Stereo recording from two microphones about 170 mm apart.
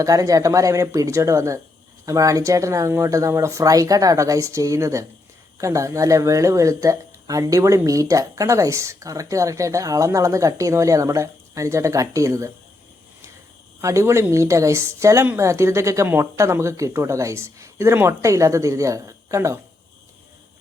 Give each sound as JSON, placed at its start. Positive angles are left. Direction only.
{"t": 0.0, "sound": "speech", "side_deg": -20}
{"t": 13.8, "sound": "a woman's voice", "side_deg": -15}